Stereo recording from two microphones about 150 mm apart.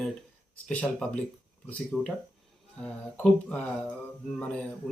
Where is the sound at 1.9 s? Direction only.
5° right (ahead or behind).